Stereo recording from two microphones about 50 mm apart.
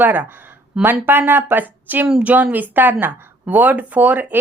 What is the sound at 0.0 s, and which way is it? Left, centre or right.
Speech, right.